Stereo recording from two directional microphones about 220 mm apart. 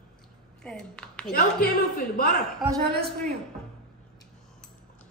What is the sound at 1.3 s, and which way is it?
Speech, 45° left (ahead or behind).